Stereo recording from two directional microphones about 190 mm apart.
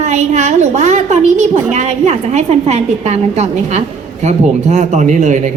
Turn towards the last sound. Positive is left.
turn(degrees=-40)  # may be behind; listen again after turning